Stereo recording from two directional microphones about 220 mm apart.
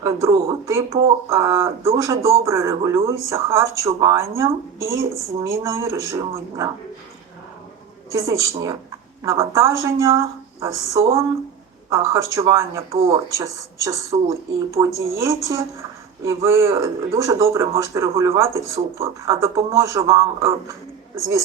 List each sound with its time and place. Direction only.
0.0 s a man's voice: 15° right (ahead or behind)
8.1 s a man's voice: 15° right (ahead or behind)
12.9 s speech: 25° right (ahead or behind)
13.3 s a man's voice: 15° right (ahead or behind)